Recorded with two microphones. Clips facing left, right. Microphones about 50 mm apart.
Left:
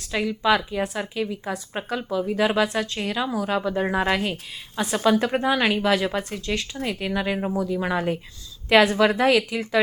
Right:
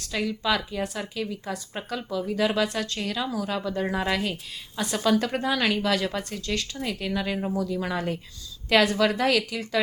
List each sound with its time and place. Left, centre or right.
0.1 s speech: centre